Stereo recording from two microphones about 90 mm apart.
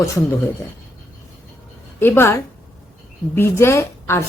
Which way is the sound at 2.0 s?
25° left (ahead or behind).